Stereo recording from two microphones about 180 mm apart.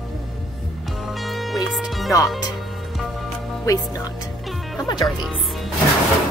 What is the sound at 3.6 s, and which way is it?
Speech, 15° left (ahead or behind).